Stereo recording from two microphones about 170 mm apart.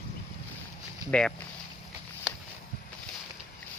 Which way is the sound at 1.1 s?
5° left (ahead or behind).